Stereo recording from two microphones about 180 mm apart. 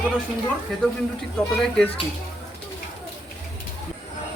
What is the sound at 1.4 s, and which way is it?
Speech, 5° left (ahead or behind).